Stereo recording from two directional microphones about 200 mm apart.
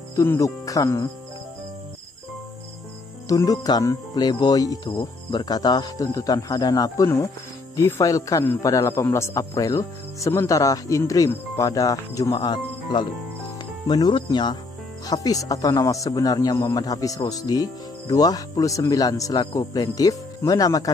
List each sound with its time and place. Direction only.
0.1 s speech: 15° left (ahead or behind)
3.3 s speech: 15° left (ahead or behind)